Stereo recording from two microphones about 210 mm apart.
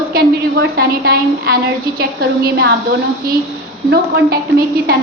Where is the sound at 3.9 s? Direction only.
45° right (ahead or behind).